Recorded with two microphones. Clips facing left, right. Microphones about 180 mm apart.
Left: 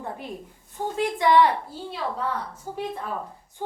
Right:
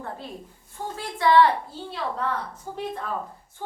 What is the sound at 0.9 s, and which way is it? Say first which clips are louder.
Speech: even; 15° left (ahead or behind).